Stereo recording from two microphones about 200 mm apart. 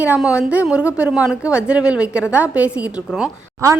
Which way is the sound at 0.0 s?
5° right (ahead or behind).